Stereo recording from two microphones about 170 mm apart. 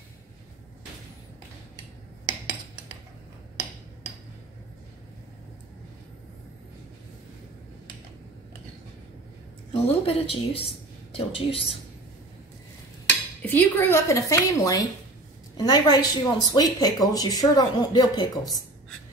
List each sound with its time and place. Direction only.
9.7 s a woman's voice: 35° left (ahead or behind)
13.4 s speech: 10° left (ahead or behind)